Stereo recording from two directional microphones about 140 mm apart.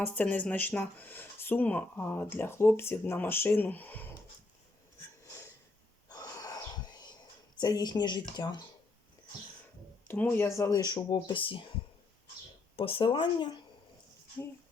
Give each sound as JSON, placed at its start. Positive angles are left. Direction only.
{"t": 0.0, "sound": "speech", "side_deg": 10}
{"t": 6.1, "sound": "gasp", "side_deg": 25}
{"t": 10.1, "sound": "speech", "side_deg": 15}
{"t": 12.7, "sound": "speech", "side_deg": 40}